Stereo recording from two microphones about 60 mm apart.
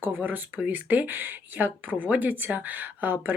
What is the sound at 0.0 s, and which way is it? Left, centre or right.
Speech, right.